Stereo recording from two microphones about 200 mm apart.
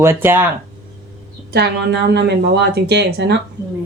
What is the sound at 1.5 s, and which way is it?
A woman's voice, 55° right (ahead or behind).